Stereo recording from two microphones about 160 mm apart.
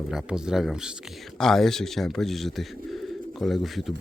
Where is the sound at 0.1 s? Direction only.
5° right (ahead or behind).